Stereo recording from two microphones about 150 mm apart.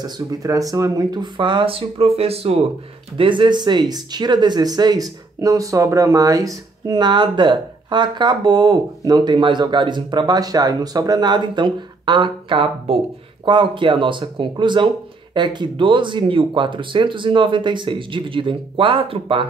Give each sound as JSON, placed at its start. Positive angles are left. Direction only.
{"t": 0.0, "sound": "speech", "side_deg": -25}